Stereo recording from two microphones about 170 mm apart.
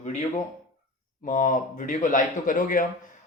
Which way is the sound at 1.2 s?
50° left (ahead or behind).